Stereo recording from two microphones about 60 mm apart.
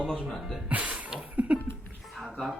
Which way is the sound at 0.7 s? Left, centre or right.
Right.